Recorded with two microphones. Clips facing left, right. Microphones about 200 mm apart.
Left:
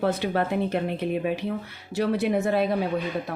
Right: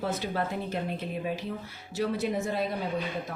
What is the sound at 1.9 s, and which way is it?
Speech, 65° left (ahead or behind).